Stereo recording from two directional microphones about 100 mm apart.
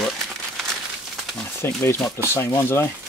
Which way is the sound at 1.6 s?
25° left (ahead or behind).